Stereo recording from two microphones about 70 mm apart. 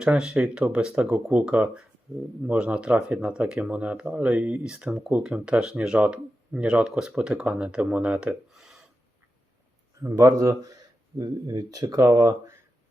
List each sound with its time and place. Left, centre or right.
0.0 s speech: centre
8.4 s gasp: centre
10.0 s speech: right